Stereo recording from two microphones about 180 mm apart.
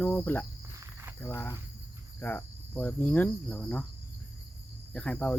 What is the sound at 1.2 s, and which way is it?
Cricket, 15° left (ahead or behind).